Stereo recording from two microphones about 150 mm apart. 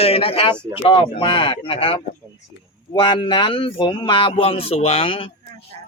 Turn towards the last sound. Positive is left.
turn(degrees=40)  # may be behind; listen again after turning